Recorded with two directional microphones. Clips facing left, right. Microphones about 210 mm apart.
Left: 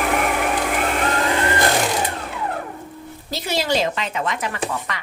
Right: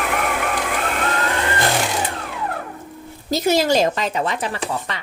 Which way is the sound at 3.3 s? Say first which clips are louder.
Right 5 dB; 45° right (ahead or behind).